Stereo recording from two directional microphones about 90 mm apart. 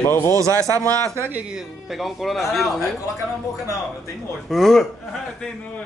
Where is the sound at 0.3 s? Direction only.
35° right (ahead or behind).